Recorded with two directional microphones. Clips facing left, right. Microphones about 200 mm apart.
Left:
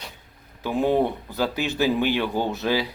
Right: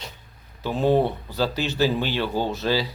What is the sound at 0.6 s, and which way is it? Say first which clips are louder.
Speech: right 1 dB; 15° left (ahead or behind).